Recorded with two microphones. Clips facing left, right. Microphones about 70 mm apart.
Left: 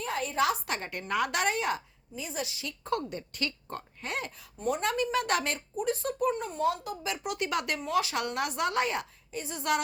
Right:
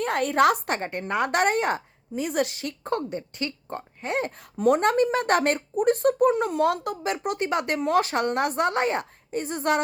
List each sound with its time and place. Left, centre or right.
0.0 s a woman's voice: right
0.8 s a woman's voice: right
3.1 s speech: right
4.5 s a woman's voice: right
4.8 s a woman's voice: right
6.3 s a woman's voice: right
7.8 s a woman's voice: right